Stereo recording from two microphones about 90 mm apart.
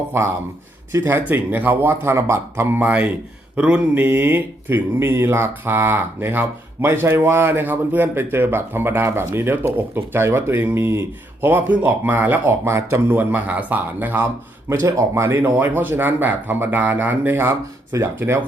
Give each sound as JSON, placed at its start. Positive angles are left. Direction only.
{"t": 1.0, "sound": "speech", "side_deg": -20}
{"t": 14.8, "sound": "speech", "side_deg": -35}